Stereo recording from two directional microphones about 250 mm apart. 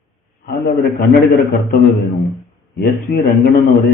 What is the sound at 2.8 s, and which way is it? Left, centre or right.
Speech, left.